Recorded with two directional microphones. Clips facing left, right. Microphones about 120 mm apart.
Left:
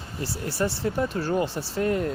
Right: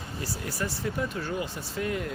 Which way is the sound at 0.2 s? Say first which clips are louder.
Left 6 dB; 30° left (ahead or behind).